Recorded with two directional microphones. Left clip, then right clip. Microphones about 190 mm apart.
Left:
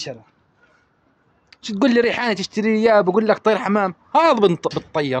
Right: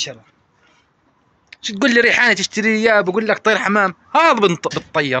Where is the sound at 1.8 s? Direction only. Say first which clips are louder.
Right 5 dB; 20° left (ahead or behind).